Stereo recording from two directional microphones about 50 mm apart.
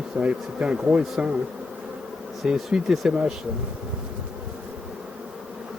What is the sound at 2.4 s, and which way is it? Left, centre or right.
Speech, centre.